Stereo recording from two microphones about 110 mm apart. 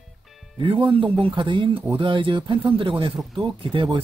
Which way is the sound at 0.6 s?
50° right (ahead or behind).